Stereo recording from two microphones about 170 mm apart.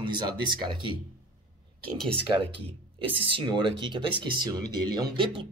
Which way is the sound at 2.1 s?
30° right (ahead or behind).